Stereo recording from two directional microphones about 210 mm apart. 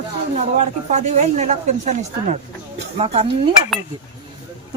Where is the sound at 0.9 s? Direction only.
35° right (ahead or behind).